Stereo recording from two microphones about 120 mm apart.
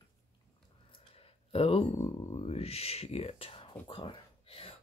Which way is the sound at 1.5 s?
55° left (ahead or behind).